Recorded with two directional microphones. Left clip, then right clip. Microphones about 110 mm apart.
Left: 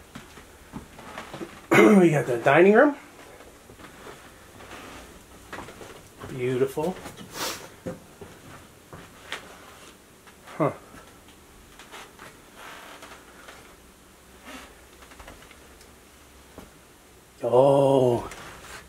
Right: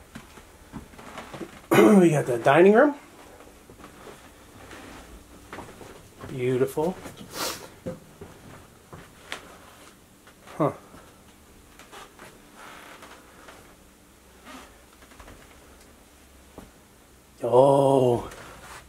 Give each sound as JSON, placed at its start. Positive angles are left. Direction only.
{"t": 1.7, "sound": "speech", "side_deg": -10}
{"t": 6.4, "sound": "speech", "side_deg": -20}
{"t": 10.6, "sound": "speech", "side_deg": -20}
{"t": 17.4, "sound": "mantra", "side_deg": -15}